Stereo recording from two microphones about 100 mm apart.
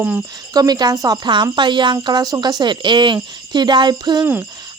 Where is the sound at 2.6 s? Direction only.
50° right (ahead or behind).